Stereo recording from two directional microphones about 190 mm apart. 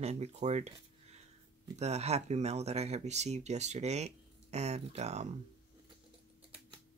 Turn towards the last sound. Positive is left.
turn(degrees=-35)  # may be behind; listen again after turning